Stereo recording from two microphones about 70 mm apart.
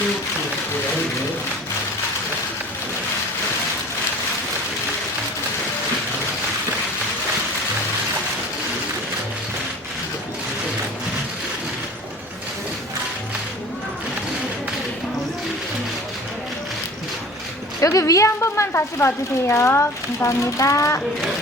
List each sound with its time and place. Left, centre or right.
17.7 s a woman's voice: left